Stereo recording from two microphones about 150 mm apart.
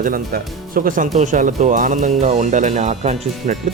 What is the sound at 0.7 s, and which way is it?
Speech, 65° right (ahead or behind).